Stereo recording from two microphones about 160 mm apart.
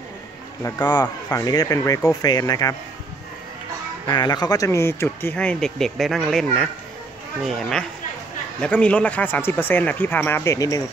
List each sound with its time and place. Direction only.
0.6 s speech: 20° left (ahead or behind)
4.1 s speech: 25° left (ahead or behind)